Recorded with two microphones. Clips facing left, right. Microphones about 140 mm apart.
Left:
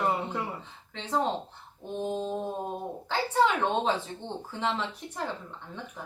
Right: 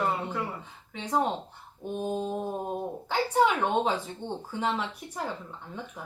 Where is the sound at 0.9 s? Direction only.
10° right (ahead or behind).